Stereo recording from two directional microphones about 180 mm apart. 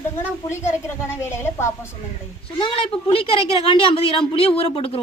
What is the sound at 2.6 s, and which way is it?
A woman's voice, 30° left (ahead or behind).